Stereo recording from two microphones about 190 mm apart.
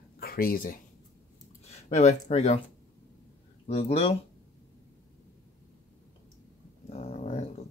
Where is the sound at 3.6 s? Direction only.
35° left (ahead or behind).